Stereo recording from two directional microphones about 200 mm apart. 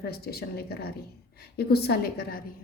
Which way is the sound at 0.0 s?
50° left (ahead or behind).